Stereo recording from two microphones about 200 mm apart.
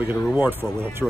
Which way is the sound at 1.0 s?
Centre (ahead or behind).